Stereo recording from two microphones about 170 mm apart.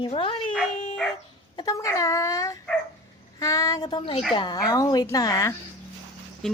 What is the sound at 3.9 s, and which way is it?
A woman's voice, 30° left (ahead or behind).